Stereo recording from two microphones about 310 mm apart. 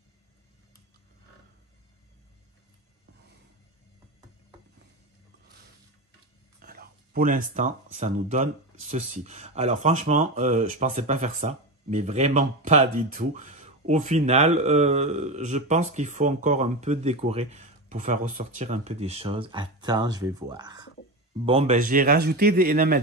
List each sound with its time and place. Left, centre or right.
6.6 s speech: right